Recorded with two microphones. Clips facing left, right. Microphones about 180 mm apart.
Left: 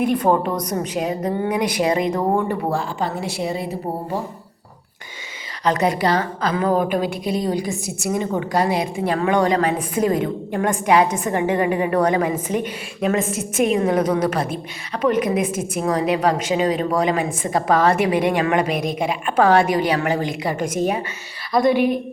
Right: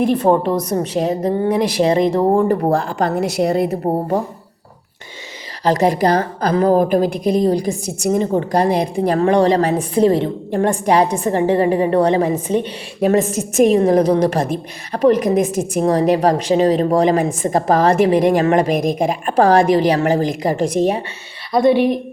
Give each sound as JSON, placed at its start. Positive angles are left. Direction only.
{"t": 0.2, "sound": "a woman's voice", "side_deg": -25}
{"t": 2.5, "sound": "speech", "side_deg": -45}
{"t": 3.4, "sound": "a woman's voice", "side_deg": -60}
{"t": 5.6, "sound": "a woman's voice", "side_deg": -35}